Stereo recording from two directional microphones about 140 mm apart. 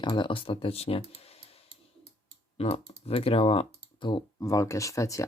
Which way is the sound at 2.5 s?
45° left (ahead or behind).